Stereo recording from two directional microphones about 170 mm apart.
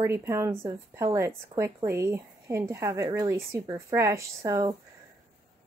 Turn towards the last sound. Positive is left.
turn(degrees=-25)  # may be behind; listen again after turning